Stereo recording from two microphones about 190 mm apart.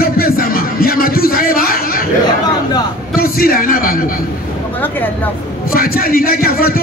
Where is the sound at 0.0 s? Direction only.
50° left (ahead or behind).